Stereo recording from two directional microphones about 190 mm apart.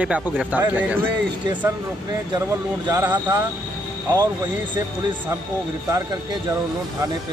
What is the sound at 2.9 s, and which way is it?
Speech, 15° right (ahead or behind).